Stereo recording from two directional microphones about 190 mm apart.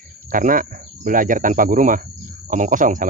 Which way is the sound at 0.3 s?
45° right (ahead or behind).